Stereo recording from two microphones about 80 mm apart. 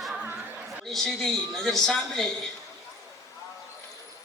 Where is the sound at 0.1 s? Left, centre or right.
Centre.